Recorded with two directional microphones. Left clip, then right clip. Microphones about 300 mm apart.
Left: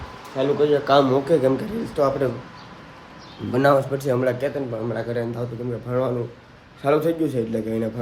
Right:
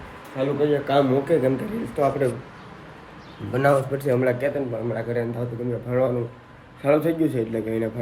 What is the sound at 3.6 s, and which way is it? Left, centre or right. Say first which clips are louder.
Speech: left 2 dB; centre.